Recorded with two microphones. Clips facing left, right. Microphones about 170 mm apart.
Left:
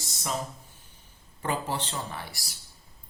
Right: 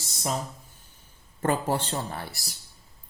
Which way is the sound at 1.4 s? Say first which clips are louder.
Right 5 dB; 45° right (ahead or behind).